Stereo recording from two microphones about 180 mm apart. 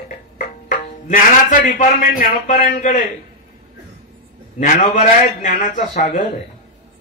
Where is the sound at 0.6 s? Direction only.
45° left (ahead or behind).